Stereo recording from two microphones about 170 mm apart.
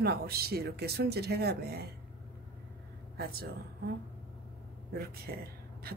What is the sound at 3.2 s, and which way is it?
Speech, 65° right (ahead or behind).